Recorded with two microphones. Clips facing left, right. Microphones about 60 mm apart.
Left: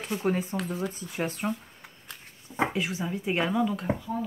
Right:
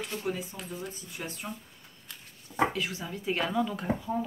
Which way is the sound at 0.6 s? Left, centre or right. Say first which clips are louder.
Left 8 dB; left.